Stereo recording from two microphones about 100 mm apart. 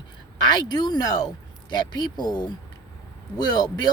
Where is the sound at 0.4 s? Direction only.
45° left (ahead or behind).